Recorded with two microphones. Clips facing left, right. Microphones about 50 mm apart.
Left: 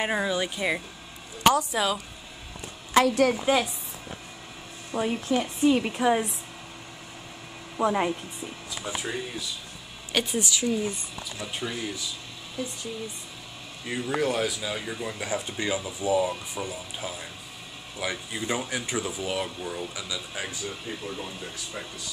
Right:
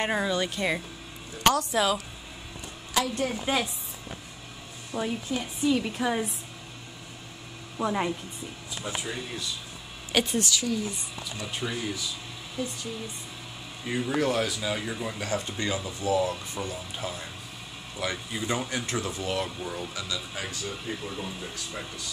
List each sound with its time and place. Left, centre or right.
0.0 s speech: centre
1.4 s a sound: centre
1.7 s speech: centre
4.9 s speech: centre
5.4 s a woman's voice: left
5.9 s speech: centre
7.7 s speech: centre
10.4 s a woman's voice: left
11.3 s speech: centre
13.8 s speech: centre
15.1 s speech: centre